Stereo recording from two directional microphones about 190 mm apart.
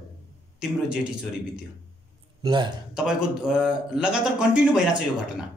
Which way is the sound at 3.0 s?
5° right (ahead or behind).